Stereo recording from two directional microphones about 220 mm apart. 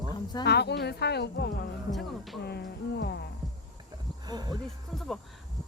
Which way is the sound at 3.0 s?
50° left (ahead or behind).